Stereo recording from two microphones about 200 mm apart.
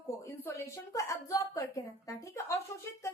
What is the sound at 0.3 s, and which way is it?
A woman's voice, 15° left (ahead or behind).